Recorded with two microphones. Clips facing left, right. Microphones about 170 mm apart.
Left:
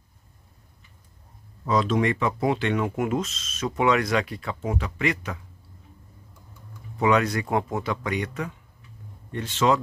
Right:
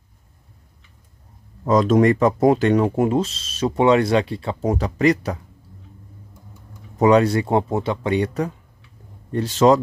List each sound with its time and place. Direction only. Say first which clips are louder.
1.6 s speech: right 7 dB; 45° right (ahead or behind)
7.0 s speech: right 7 dB; 35° right (ahead or behind)